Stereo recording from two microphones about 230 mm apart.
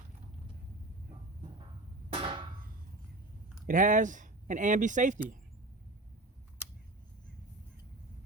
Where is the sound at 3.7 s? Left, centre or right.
Right.